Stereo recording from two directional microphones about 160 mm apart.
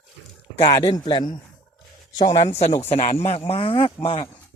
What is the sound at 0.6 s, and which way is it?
Speech, 20° left (ahead or behind).